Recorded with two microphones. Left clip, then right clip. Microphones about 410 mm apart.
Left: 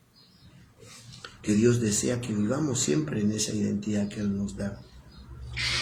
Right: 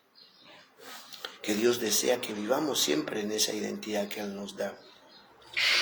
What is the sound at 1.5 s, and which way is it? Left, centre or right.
Speech, centre.